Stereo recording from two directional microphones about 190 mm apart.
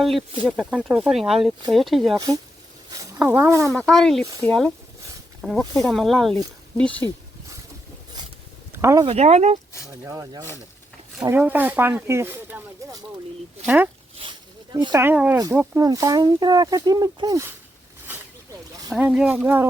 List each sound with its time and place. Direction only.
0.4 s speech: 5° right (ahead or behind)
2.1 s speech: 20° right (ahead or behind)
3.7 s speech: centre (ahead or behind)
8.7 s a sound: 15° right (ahead or behind)
9.0 s speech: 35° right (ahead or behind)
10.0 s speech: 15° right (ahead or behind)
14.2 s snake: 25° right (ahead or behind)
15.0 s speech: 5° right (ahead or behind)
15.5 s speech: 15° right (ahead or behind)
18.9 s speech: 5° right (ahead or behind)